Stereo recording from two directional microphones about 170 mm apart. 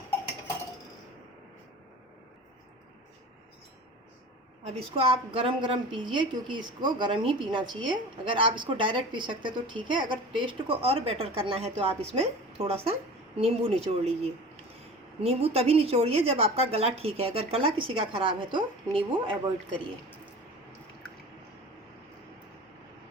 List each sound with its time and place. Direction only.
4.6 s a woman's voice: 35° right (ahead or behind)
15.2 s a woman's voice: 35° right (ahead or behind)